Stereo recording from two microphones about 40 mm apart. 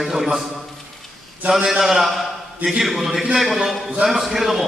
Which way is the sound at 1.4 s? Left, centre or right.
Centre.